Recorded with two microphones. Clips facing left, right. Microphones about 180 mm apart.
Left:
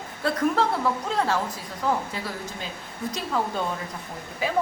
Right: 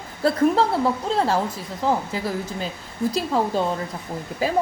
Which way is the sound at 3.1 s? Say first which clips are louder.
Right 5 dB; 35° right (ahead or behind).